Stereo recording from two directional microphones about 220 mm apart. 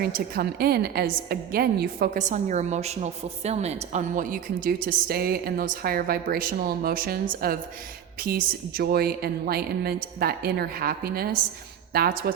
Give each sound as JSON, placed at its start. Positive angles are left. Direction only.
{"t": 0.0, "sound": "a woman's voice", "side_deg": -45}